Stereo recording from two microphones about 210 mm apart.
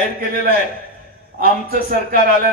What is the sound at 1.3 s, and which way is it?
Speech, 45° right (ahead or behind).